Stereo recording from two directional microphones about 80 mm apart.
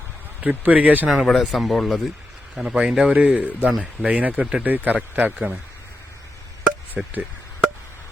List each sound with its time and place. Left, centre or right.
0.4 s speech: centre
1.1 s speech: centre
2.6 s a man's voice: centre
6.9 s a man's voice: right